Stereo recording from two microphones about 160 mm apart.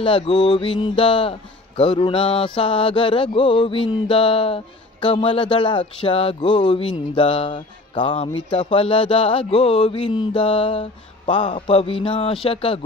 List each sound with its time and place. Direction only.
0.0 s speech: 30° left (ahead or behind)